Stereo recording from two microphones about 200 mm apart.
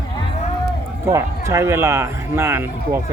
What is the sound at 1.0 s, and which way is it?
Speech, 15° right (ahead or behind).